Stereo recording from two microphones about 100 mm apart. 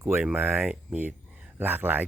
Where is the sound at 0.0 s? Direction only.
20° right (ahead or behind).